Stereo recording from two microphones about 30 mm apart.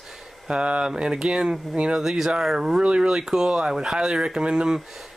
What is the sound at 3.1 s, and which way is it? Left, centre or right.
Speech, right.